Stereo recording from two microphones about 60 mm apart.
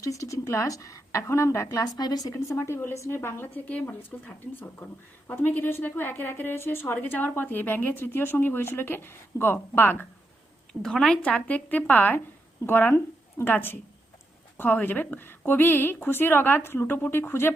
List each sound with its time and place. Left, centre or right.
0.0 s a woman's voice: left
2.3 s a woman's voice: left
5.3 s a woman's voice: left
10.7 s speech: centre
11.2 s a woman's voice: left